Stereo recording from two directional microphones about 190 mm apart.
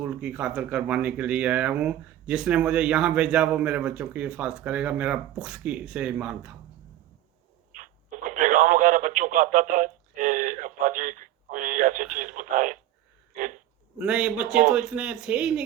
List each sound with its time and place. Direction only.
0.0 s speech: 5° right (ahead or behind)
8.3 s radio: 45° right (ahead or behind)
14.0 s speech: 5° right (ahead or behind)